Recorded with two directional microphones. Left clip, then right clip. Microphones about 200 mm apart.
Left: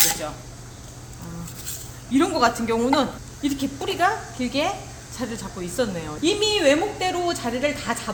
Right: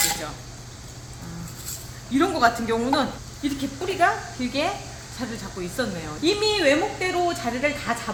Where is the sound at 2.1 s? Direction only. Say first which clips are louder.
Even; 40° left (ahead or behind).